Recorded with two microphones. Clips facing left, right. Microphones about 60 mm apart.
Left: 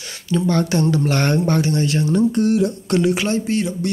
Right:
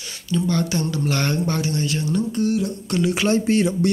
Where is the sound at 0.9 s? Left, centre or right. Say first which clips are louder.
Left 5 dB; left.